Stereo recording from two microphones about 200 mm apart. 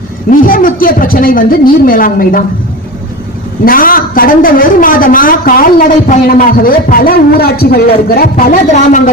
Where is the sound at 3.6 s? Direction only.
45° left (ahead or behind).